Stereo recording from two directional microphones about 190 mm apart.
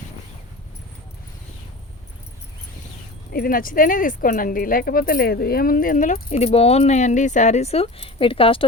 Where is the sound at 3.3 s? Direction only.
50° left (ahead or behind); by 8.6 s 30° left (ahead or behind).